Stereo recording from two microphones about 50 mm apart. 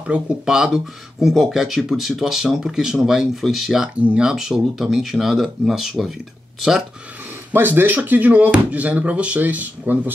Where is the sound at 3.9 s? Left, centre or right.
Right.